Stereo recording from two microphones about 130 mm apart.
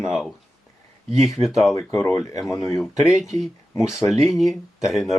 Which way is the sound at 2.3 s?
25° left (ahead or behind).